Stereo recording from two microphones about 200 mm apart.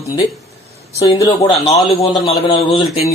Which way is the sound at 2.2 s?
30° left (ahead or behind).